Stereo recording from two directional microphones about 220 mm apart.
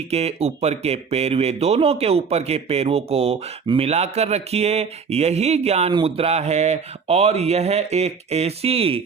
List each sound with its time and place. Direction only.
0.1 s speech: 30° right (ahead or behind)